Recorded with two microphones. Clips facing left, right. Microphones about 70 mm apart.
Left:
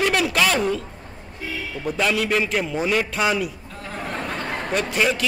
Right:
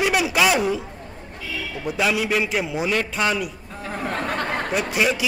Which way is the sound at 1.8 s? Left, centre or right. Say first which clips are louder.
Even; centre.